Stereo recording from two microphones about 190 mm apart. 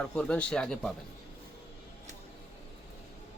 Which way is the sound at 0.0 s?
5° left (ahead or behind).